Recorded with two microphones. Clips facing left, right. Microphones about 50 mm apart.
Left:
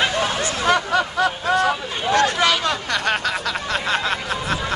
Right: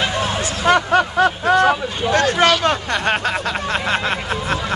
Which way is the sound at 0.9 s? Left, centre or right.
Right.